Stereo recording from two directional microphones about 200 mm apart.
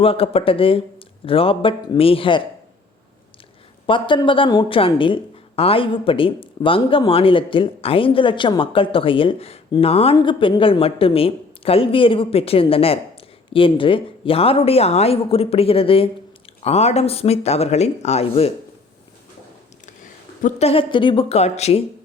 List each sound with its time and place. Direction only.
0.0 s speech: 30° left (ahead or behind)
3.8 s speech: 25° left (ahead or behind)
20.4 s speech: 30° left (ahead or behind)